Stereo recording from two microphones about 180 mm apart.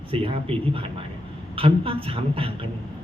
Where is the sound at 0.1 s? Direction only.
30° right (ahead or behind).